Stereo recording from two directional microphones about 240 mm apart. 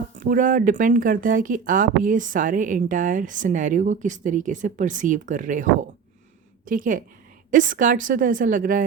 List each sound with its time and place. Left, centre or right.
0.2 s speech: right
6.7 s speech: right